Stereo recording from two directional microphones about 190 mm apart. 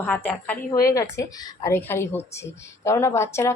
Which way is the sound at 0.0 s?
10° left (ahead or behind).